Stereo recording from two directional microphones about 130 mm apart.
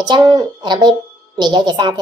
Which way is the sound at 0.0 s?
30° right (ahead or behind).